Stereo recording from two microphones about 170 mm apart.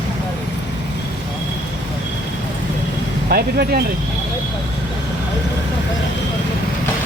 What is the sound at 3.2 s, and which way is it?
Speech, 60° right (ahead or behind).